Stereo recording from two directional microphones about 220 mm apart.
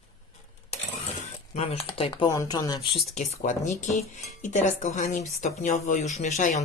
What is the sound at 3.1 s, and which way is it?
Speech, 30° left (ahead or behind).